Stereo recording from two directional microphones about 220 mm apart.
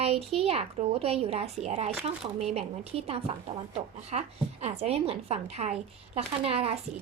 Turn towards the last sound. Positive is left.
turn(degrees=-25)  # may be behind; listen again after turning